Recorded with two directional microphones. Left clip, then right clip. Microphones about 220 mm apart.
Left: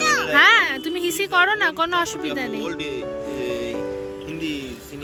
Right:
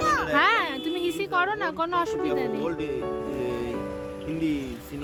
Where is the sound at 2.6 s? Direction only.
40° right (ahead or behind).